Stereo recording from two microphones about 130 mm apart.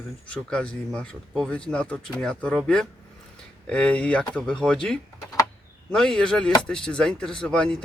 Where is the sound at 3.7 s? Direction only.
10° left (ahead or behind).